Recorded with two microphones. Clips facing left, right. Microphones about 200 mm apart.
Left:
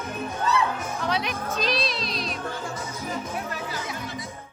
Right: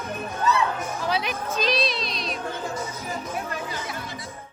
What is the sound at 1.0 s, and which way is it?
Music, centre (ahead or behind).